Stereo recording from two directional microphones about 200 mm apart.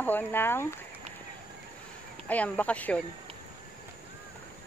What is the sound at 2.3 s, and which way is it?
Speech, 10° left (ahead or behind).